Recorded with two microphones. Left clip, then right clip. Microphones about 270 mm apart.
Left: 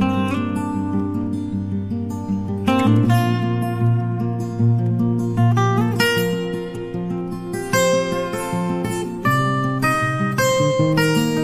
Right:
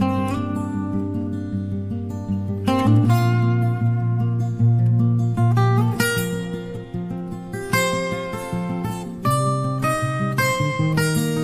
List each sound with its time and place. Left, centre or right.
0.0 s music: right
2.6 s music: right
5.4 s music: right
7.7 s music: right
9.2 s music: centre